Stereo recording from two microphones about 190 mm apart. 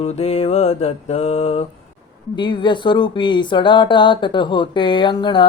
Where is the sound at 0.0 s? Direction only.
35° left (ahead or behind).